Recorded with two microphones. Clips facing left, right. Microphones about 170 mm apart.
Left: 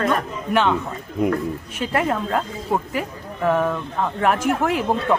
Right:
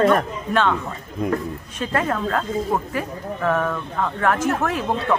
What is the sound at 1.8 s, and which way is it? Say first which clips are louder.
Speech: left 1 dB; 20° left (ahead or behind).